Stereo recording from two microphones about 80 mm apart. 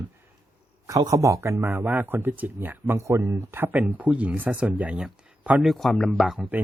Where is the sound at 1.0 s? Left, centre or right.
Right.